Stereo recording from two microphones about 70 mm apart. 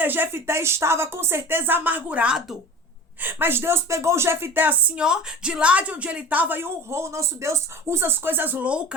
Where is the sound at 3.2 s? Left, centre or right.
Right.